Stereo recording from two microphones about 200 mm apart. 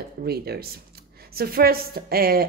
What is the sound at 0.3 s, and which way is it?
A woman's voice, 50° right (ahead or behind).